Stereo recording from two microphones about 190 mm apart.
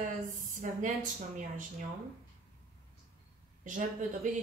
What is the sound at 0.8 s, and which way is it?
Speech, 40° right (ahead or behind).